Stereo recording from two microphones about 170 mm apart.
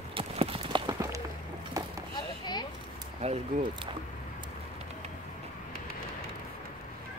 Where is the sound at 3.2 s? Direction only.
35° right (ahead or behind).